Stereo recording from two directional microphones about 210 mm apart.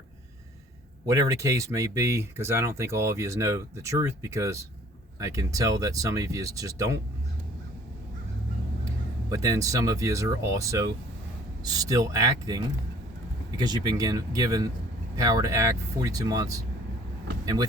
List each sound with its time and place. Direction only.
1.0 s speech: 15° right (ahead or behind)
9.3 s speech: 15° right (ahead or behind)